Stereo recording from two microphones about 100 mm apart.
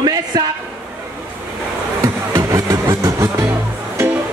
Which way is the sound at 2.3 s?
30° right (ahead or behind).